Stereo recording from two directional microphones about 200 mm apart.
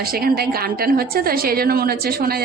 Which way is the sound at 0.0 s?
50° right (ahead or behind).